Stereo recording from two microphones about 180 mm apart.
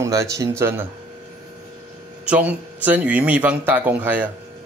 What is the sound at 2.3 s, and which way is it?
Speech, 10° right (ahead or behind).